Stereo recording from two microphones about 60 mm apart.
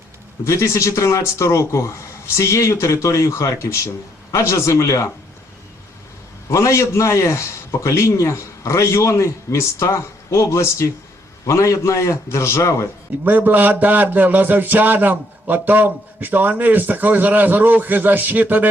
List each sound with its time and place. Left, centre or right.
0.4 s speech: left
6.5 s speech: left
13.2 s a man's voice: right